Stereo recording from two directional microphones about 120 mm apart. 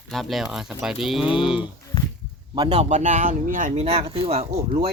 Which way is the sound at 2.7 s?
70° right (ahead or behind).